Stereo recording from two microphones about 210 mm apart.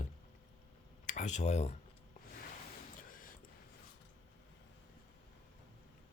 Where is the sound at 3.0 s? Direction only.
40° left (ahead or behind).